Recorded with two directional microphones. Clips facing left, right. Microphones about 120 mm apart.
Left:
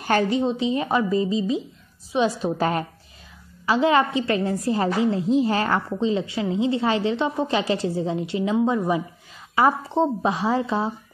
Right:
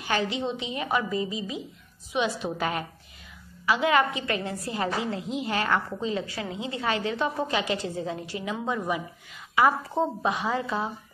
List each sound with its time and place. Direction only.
0.0 s a woman's voice: 45° left (ahead or behind); by 10.9 s 30° left (ahead or behind)